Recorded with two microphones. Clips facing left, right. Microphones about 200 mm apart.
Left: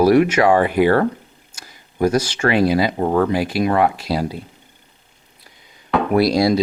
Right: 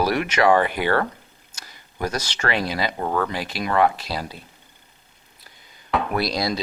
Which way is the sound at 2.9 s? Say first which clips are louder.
Left 7 dB; 25° left (ahead or behind).